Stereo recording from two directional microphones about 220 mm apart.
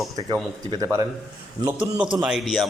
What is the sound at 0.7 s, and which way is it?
A man's voice, 15° right (ahead or behind).